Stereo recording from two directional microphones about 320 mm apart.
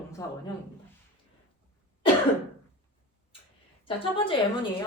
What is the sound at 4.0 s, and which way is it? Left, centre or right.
Speech, centre.